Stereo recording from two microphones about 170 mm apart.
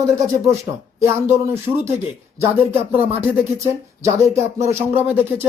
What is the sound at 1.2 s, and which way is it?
Speech, 15° right (ahead or behind).